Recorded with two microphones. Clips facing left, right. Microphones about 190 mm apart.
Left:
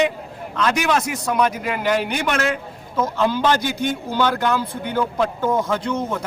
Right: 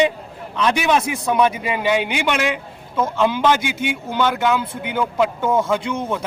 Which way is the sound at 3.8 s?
10° right (ahead or behind).